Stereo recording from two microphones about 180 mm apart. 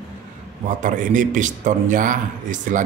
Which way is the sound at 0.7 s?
45° right (ahead or behind).